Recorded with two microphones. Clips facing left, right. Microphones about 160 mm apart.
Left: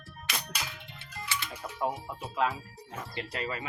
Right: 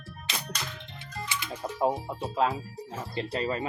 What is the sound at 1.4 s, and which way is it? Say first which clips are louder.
Speech: right 7 dB; 30° right (ahead or behind).